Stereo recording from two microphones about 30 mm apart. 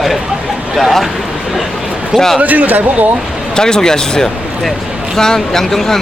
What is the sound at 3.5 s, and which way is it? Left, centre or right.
Speech, left.